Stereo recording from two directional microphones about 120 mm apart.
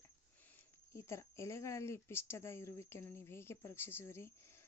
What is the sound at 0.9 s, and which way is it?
Speech, 25° left (ahead or behind).